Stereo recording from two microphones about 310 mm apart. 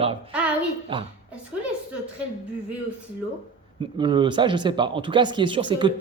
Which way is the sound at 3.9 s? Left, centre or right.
Centre.